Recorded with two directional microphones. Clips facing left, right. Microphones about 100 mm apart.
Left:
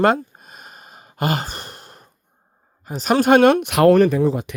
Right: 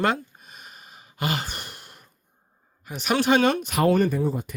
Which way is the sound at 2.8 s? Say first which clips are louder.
Left 6 dB; 35° left (ahead or behind).